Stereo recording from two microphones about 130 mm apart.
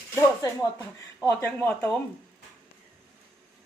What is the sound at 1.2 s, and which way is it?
Speech, 15° left (ahead or behind).